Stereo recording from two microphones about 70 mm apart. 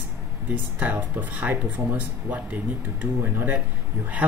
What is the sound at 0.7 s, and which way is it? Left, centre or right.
Speech, right.